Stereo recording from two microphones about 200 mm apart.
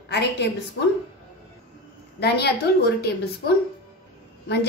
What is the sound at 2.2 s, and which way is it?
A woman's voice, 55° left (ahead or behind).